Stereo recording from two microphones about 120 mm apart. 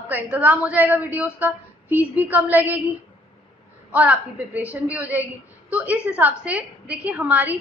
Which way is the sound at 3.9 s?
10° right (ahead or behind).